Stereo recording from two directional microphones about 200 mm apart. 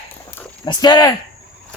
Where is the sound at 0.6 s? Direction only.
20° left (ahead or behind).